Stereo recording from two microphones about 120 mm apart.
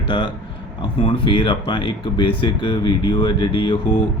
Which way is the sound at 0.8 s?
45° left (ahead or behind).